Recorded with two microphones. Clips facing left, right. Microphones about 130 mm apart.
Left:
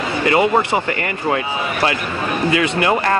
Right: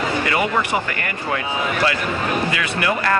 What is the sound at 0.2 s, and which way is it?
Speech, 25° left (ahead or behind).